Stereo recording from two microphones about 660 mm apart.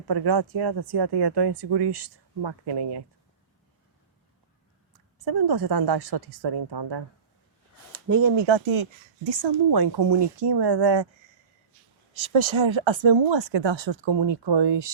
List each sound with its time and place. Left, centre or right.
0.1 s speech: right
4.9 s speech: right
7.9 s speech: right
12.1 s speech: right